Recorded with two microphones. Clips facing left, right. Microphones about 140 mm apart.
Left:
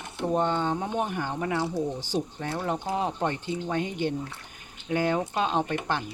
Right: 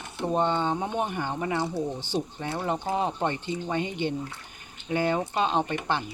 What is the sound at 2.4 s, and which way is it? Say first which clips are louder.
Speech: even; centre (ahead or behind).